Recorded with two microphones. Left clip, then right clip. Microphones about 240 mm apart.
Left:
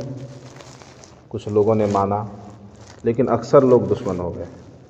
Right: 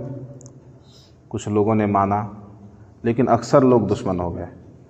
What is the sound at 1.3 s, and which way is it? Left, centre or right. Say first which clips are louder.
A man's voice: left 2 dB; right.